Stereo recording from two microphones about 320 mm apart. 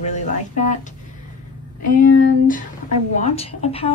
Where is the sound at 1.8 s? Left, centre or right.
Left.